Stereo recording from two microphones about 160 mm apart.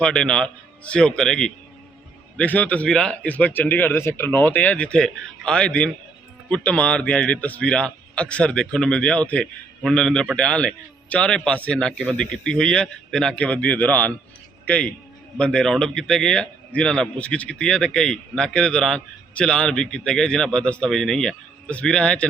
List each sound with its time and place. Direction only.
0.0 s a man's voice: 5° left (ahead or behind)